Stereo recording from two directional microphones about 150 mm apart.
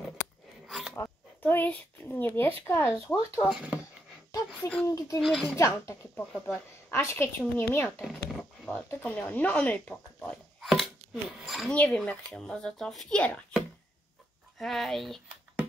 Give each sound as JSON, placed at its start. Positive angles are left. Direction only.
{"t": 0.7, "sound": "a sound", "side_deg": 0}
{"t": 0.9, "sound": "a woman's voice", "side_deg": 15}
{"t": 3.4, "sound": "speech", "side_deg": -5}
{"t": 4.6, "sound": "a woman's voice", "side_deg": 5}
{"t": 4.9, "sound": "speech", "side_deg": 25}
{"t": 5.2, "sound": "speech", "side_deg": 0}
{"t": 5.6, "sound": "speech", "side_deg": 20}
{"t": 6.3, "sound": "speech", "side_deg": 0}
{"t": 6.9, "sound": "a woman's voice", "side_deg": 15}
{"t": 8.0, "sound": "speech", "side_deg": 0}
{"t": 8.6, "sound": "speech", "side_deg": 10}